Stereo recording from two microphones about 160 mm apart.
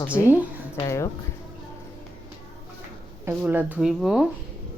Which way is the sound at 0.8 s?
20° left (ahead or behind).